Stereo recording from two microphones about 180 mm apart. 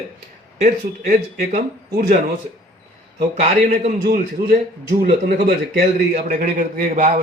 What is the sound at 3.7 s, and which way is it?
A man's voice, 55° right (ahead or behind).